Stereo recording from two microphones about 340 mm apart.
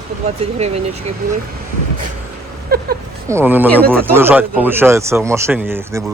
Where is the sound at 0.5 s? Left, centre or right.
Centre.